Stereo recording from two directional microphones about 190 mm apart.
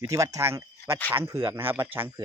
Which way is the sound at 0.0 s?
15° right (ahead or behind).